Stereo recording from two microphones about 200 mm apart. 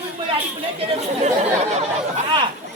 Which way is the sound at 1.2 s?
35° right (ahead or behind).